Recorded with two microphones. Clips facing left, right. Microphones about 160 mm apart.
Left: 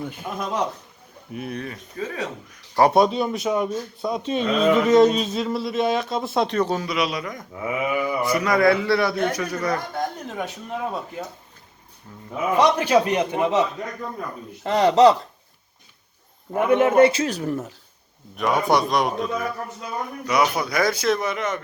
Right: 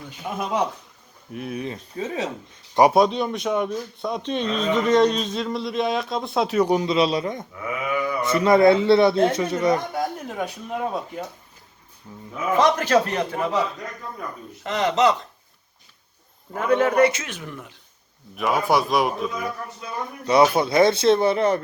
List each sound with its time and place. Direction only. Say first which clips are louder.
1.3 s speech: even; centre (ahead or behind)
1.6 s speech: right 2 dB; 25° right (ahead or behind)
2.9 s speech: even; centre (ahead or behind); by 7.4 s 25° right (ahead or behind)
7.5 s speech: left 6 dB; 25° left (ahead or behind)
8.2 s speech: right 4 dB; 25° right (ahead or behind)
10.0 s speech: right 1 dB; centre (ahead or behind)
12.5 s a man's voice: left 1 dB; 10° left (ahead or behind)
14.6 s speech: left 5 dB; 35° left (ahead or behind)
16.6 s speech: left 3 dB; 20° left (ahead or behind); by 17.7 s 40° left (ahead or behind)
18.3 s speech: left 1 dB; centre (ahead or behind)
20.2 s speech: right 5 dB; 30° right (ahead or behind)